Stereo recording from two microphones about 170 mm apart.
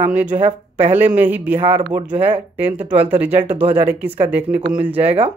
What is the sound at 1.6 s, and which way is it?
Speech, 40° right (ahead or behind).